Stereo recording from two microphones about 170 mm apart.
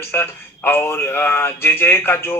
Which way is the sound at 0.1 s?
15° left (ahead or behind).